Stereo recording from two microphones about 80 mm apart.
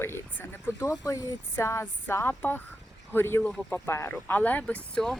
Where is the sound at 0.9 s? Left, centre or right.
Left.